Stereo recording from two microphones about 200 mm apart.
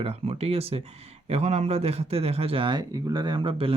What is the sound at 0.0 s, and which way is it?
Speech, 30° right (ahead or behind).